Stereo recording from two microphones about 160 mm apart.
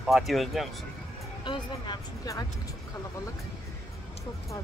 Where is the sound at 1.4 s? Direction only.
30° left (ahead or behind).